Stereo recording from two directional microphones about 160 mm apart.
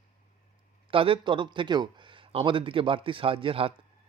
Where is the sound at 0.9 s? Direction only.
35° right (ahead or behind).